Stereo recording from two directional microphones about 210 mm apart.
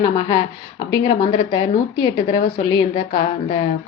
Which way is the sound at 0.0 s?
20° left (ahead or behind).